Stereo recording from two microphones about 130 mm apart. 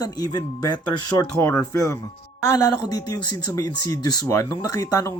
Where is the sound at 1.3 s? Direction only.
10° left (ahead or behind).